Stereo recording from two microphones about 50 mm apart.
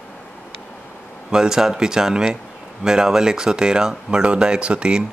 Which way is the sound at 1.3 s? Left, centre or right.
Centre.